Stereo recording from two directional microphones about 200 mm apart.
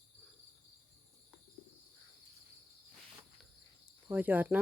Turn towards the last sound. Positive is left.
turn(degrees=-10)  # may be behind; listen again after turning